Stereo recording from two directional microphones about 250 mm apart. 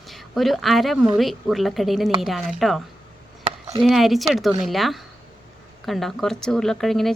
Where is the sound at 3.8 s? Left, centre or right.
Centre.